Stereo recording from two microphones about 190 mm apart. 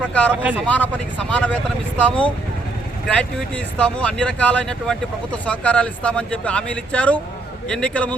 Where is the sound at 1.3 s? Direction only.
5° left (ahead or behind).